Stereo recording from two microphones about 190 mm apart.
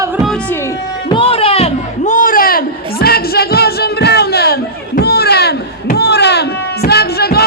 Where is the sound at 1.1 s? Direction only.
30° left (ahead or behind).